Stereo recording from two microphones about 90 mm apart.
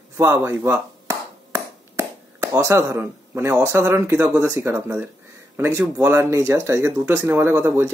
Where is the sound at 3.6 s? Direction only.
30° right (ahead or behind).